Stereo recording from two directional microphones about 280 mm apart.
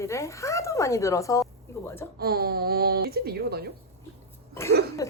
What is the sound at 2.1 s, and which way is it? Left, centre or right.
Speech, right.